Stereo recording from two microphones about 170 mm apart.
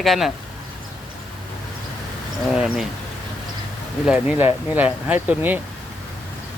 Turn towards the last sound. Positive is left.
turn(degrees=-10)  # may be behind; listen again after turning